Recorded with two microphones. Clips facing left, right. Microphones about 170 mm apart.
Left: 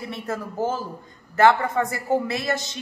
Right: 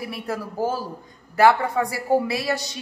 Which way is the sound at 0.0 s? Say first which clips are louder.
Right 1 dB; 10° right (ahead or behind).